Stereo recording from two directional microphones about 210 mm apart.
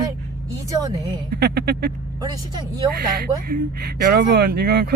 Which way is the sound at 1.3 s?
50° right (ahead or behind).